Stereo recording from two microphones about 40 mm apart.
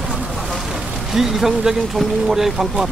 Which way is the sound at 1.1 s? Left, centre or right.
Centre.